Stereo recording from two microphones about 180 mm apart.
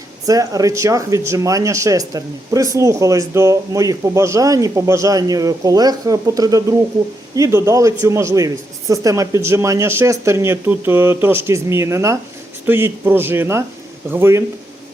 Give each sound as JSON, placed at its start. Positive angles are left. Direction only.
{"t": 0.3, "sound": "speech", "side_deg": -20}